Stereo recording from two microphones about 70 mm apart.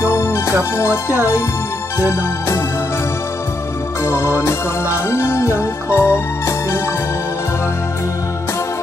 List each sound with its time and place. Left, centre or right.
0.1 s music: left
2.0 s music: left
4.0 s music: left